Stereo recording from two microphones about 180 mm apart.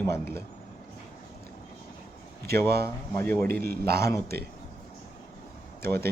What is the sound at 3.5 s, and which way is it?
Speech, 60° right (ahead or behind).